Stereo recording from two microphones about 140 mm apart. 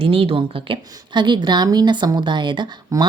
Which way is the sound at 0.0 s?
40° right (ahead or behind).